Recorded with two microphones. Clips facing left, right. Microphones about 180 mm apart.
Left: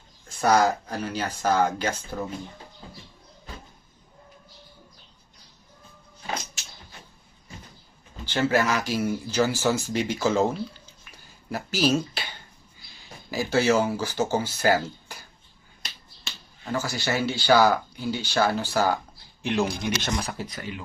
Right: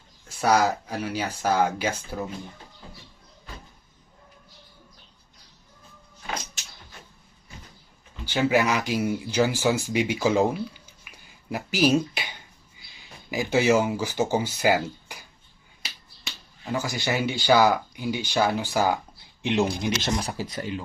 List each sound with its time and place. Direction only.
0.3 s speech: 5° right (ahead or behind)
8.2 s speech: 15° right (ahead or behind)
16.7 s speech: 15° right (ahead or behind)